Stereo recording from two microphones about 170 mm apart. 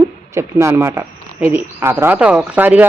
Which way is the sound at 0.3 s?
15° right (ahead or behind).